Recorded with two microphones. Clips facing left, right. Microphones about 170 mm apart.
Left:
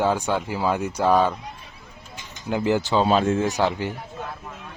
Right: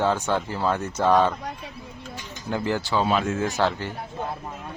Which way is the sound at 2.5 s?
15° left (ahead or behind).